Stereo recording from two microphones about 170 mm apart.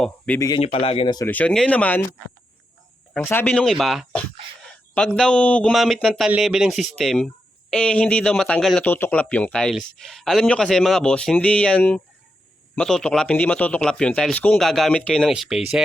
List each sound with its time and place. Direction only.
0.3 s speech: 20° left (ahead or behind)
0.6 s a man's voice: 35° left (ahead or behind)
1.3 s speech: 5° left (ahead or behind)
3.2 s speech: 10° left (ahead or behind)